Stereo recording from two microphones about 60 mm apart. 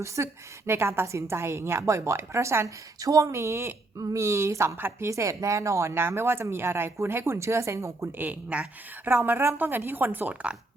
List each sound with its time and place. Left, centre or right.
0.2 s speech: right
0.7 s speech: right
3.0 s speech: right
4.8 s a woman's voice: right
5.0 s speech: right
8.2 s a woman's voice: right
9.0 s a woman's voice: right